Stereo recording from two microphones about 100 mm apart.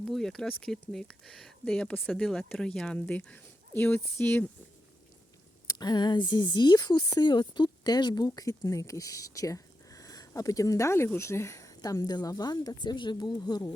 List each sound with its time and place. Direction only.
0.0 s speech: 5° left (ahead or behind); by 4.4 s 20° left (ahead or behind)
5.6 s speech: 45° left (ahead or behind)